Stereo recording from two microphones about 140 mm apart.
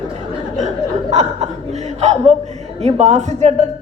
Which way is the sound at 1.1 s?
55° right (ahead or behind).